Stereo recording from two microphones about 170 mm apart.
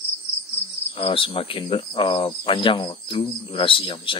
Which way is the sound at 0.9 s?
35° left (ahead or behind).